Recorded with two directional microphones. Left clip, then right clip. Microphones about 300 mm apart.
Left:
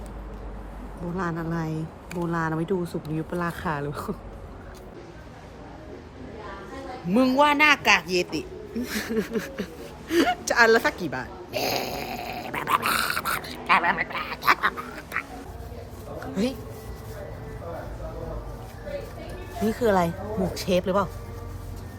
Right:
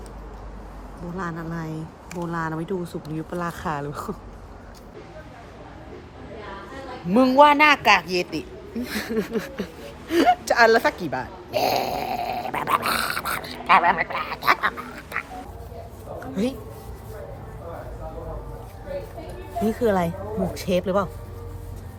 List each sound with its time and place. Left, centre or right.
1.1 s speech: centre
7.1 s speech: centre
10.1 s a sound: centre
19.6 s speech: centre